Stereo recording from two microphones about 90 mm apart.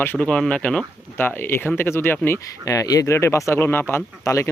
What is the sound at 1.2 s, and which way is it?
Speech, 25° left (ahead or behind).